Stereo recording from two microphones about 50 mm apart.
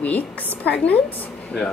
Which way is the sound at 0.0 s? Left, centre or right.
Left.